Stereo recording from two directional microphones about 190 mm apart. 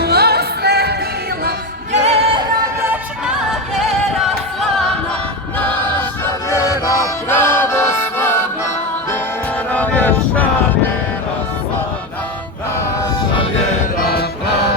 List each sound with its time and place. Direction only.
0.0 s music: 55° right (ahead or behind)
1.9 s music: 30° right (ahead or behind)
2.9 s music: 5° right (ahead or behind)
5.5 s choir: 10° left (ahead or behind)
6.5 s music: 15° left (ahead or behind)
9.7 s music: 5° left (ahead or behind)
14.0 s music: 55° left (ahead or behind)